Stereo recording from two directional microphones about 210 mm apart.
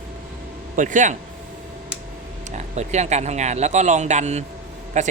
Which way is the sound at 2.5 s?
35° right (ahead or behind).